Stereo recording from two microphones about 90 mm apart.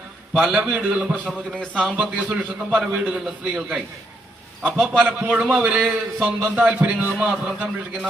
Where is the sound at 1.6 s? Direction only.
10° left (ahead or behind).